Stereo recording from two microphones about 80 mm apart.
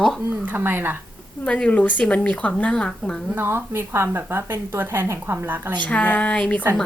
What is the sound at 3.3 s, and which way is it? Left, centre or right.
Speech, right.